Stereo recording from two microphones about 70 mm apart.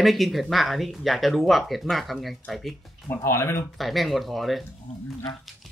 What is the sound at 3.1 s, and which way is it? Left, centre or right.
Speech, left.